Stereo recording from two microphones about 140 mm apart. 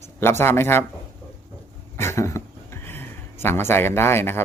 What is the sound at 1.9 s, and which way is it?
Speech, 20° left (ahead or behind).